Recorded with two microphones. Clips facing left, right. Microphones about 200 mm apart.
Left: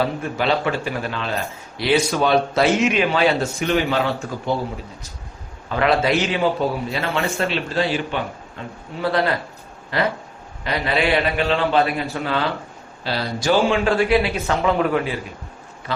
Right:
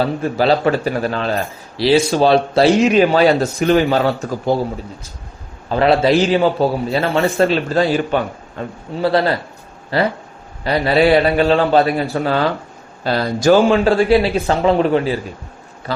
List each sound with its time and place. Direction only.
0.0 s a man's voice: 35° right (ahead or behind)
1.8 s a man's voice: 30° right (ahead or behind)
5.6 s a man's voice: 35° right (ahead or behind)